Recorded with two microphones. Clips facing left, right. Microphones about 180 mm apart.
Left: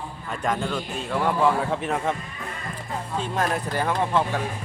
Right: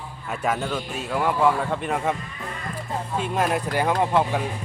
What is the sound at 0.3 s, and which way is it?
Speech, 5° right (ahead or behind).